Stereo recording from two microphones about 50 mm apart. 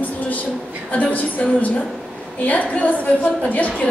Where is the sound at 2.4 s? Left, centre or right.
Left.